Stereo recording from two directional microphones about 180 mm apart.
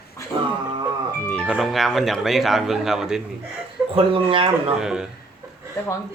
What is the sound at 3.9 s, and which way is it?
Speech, 30° right (ahead or behind).